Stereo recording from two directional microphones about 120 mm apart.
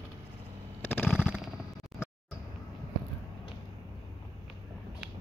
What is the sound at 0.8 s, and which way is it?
Machine gun, 15° left (ahead or behind).